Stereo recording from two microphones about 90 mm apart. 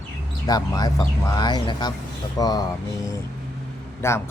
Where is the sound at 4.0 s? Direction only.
30° left (ahead or behind).